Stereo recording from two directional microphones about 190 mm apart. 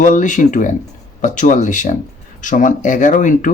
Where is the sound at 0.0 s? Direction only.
40° left (ahead or behind).